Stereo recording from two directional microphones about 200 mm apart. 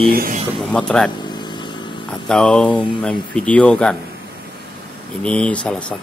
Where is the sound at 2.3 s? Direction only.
5° left (ahead or behind).